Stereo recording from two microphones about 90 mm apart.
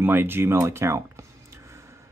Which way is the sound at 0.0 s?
25° right (ahead or behind).